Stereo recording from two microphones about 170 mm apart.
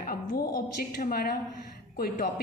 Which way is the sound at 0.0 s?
60° left (ahead or behind).